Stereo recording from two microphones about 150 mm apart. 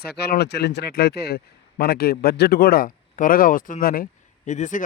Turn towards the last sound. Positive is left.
turn(degrees=55)  # may be behind; listen again after turning